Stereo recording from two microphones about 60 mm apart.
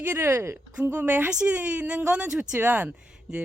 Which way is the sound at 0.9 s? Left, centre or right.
Right.